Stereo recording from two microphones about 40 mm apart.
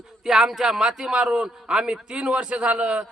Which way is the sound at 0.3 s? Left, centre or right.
Centre.